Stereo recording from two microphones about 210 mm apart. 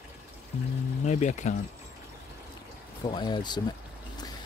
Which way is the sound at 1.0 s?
35° left (ahead or behind).